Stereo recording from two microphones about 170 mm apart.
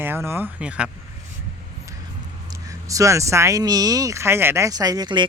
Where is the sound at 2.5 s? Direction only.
20° right (ahead or behind).